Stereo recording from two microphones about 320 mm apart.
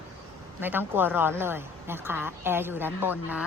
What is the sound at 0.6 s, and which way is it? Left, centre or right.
A woman's voice, centre.